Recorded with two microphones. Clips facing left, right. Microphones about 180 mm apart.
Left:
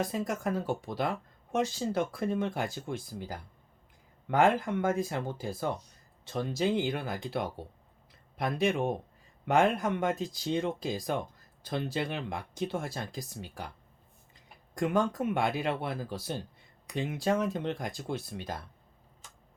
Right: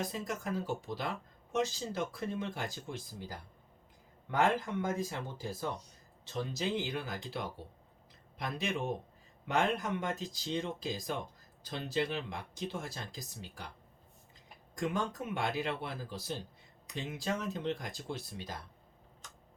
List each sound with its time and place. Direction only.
0.1 s speech: 60° left (ahead or behind)
8.4 s speech: 55° left (ahead or behind)
14.8 s speech: 55° left (ahead or behind)